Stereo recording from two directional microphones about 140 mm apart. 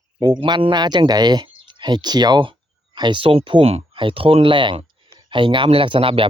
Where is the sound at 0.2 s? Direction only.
30° right (ahead or behind).